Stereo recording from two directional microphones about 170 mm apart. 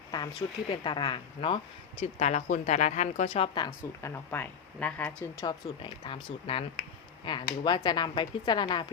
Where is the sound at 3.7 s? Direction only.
15° left (ahead or behind).